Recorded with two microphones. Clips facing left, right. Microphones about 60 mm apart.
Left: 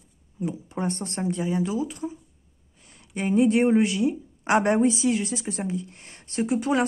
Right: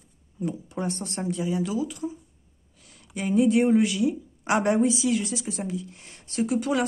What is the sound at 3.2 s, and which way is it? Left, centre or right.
A woman's voice, left.